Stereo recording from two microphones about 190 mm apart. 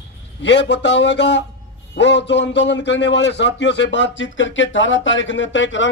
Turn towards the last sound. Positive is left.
turn(degrees=75)  # may be behind; listen again after turning